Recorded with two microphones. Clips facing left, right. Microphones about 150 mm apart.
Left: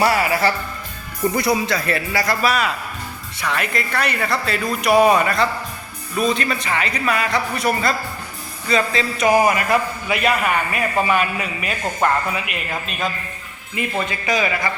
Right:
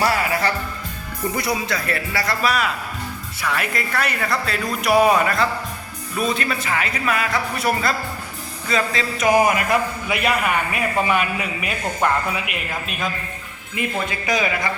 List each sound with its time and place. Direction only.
0.0 s music: 10° left (ahead or behind)
1.6 s speech: 25° left (ahead or behind)
2.5 s speech: centre (ahead or behind)